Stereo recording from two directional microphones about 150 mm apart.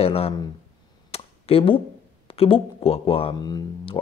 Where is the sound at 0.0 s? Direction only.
40° left (ahead or behind).